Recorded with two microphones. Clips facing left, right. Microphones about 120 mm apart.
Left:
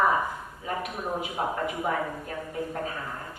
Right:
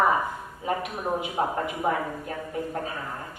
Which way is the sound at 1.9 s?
40° right (ahead or behind).